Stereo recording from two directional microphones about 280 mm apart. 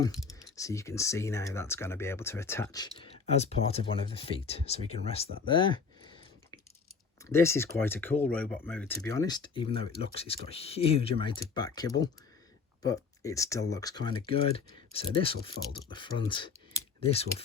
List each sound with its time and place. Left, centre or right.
0.5 s speech: centre